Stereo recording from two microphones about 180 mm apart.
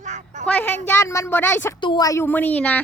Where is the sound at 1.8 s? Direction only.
25° left (ahead or behind); by 2.8 s 10° left (ahead or behind).